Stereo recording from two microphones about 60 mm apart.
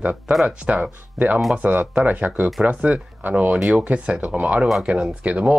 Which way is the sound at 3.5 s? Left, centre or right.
Centre.